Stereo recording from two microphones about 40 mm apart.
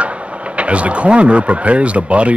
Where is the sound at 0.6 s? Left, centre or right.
Right.